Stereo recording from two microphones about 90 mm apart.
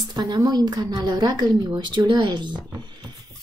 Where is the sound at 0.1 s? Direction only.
50° right (ahead or behind).